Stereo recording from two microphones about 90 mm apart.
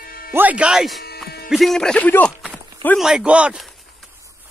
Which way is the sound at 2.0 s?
15° left (ahead or behind).